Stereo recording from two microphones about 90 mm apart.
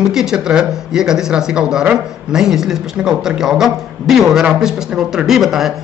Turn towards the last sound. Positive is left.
turn(degrees=-5)  # may be behind; listen again after turning